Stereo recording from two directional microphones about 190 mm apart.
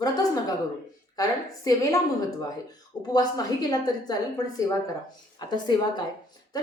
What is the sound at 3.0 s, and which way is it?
A woman's voice, 20° left (ahead or behind).